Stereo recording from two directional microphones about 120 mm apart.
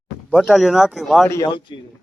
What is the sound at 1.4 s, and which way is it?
Speech, 40° left (ahead or behind).